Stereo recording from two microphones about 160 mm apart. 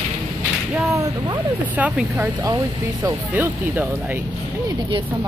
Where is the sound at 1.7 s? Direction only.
10° right (ahead or behind).